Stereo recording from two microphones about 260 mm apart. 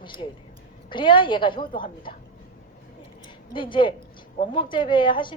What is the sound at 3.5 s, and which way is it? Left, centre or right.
Speech, centre.